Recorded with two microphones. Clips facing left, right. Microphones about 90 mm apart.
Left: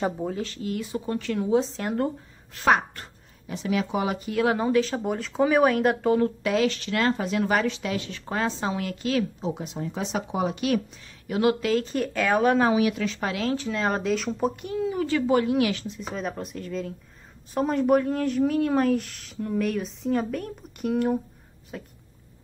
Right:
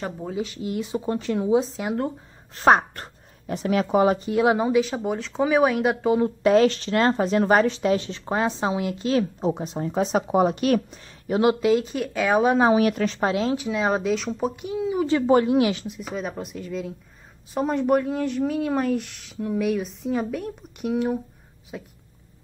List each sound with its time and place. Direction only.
0.4 s speech: 15° right (ahead or behind)
1.6 s speech: 5° right (ahead or behind)
2.5 s speech: 35° right (ahead or behind)
4.3 s speech: 20° right (ahead or behind)
6.4 s speech: 35° right (ahead or behind)
9.5 s speech: 35° right (ahead or behind)
11.2 s speech: 25° right (ahead or behind)
11.8 s speech: 5° right (ahead or behind)
12.7 s speech: 45° right (ahead or behind); by 13.6 s 25° right (ahead or behind)
13.6 s speech: 10° right (ahead or behind)
15.0 s speech: 30° right (ahead or behind)
16.1 s speech: 5° right (ahead or behind)